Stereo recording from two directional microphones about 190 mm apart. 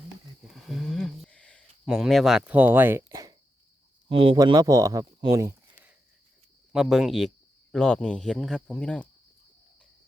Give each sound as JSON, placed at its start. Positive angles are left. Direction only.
{"t": 0.4, "sound": "a sound", "side_deg": 0}
{"t": 4.1, "sound": "speech", "side_deg": -25}
{"t": 6.7, "sound": "speech", "side_deg": 0}